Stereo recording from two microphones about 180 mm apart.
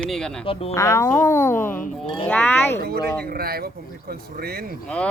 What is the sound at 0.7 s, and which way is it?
Speech, 15° left (ahead or behind).